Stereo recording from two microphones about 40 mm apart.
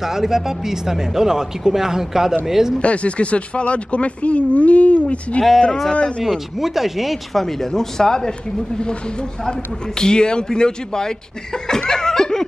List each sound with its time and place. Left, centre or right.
0.0 s speech: centre
2.8 s speech: left
5.6 s speech: centre
5.9 s speech: left
6.3 s speech: centre
7.4 s speech: centre
11.9 s laughter: centre